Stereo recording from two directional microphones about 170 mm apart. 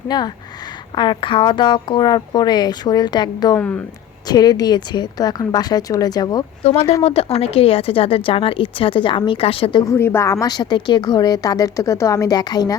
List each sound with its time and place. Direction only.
0.1 s a woman's voice: 25° left (ahead or behind)
3.6 s speech: 10° left (ahead or behind)
4.3 s a woman's voice: 25° left (ahead or behind)
7.0 s speech: 35° left (ahead or behind)
9.8 s a woman's voice: 15° left (ahead or behind)